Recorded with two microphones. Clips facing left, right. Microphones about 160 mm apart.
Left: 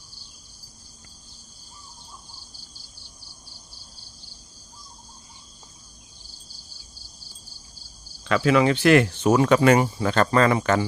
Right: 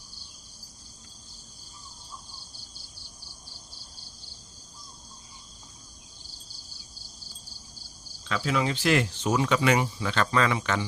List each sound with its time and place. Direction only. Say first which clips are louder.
8.2 s speech: left 8 dB; 70° left (ahead or behind); by 10.8 s 45° left (ahead or behind)